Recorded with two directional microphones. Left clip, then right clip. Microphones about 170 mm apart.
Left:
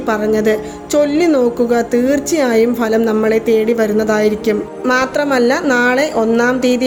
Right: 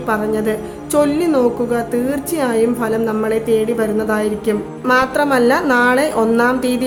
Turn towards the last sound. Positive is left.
turn(degrees=10)  # may be behind; listen again after turning